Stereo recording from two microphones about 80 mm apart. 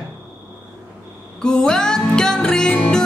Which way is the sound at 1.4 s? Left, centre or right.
Centre.